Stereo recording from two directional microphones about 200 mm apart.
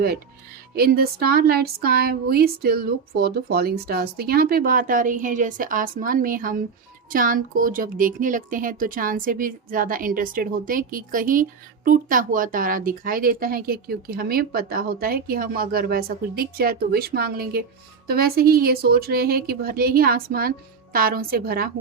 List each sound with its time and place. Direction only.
0.8 s speech: 50° right (ahead or behind)